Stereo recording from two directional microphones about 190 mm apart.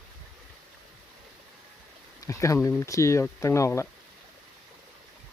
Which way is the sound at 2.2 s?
15° left (ahead or behind).